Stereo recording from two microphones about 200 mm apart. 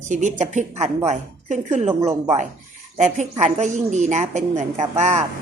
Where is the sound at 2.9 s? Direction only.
35° right (ahead or behind).